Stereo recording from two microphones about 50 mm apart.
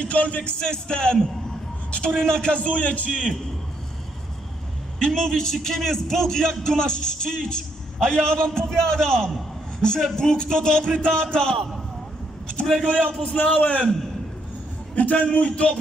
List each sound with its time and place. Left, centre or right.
0.0 s a man's voice: left
4.9 s a man's voice: centre
12.6 s a man's voice: centre
13.3 s a man's voice: left
15.0 s a man's voice: left